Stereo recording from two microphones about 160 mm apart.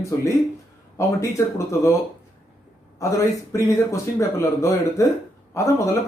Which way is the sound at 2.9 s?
20° left (ahead or behind).